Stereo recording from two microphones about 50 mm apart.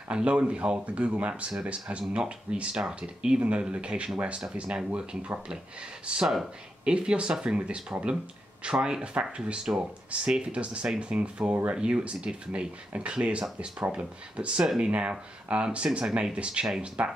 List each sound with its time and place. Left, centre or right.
0.1 s speech: right
9.0 s speech: right